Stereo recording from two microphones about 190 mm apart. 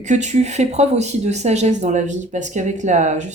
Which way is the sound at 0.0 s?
40° right (ahead or behind).